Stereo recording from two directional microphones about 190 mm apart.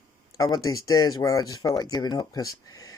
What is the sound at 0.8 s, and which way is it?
Speech, 20° left (ahead or behind).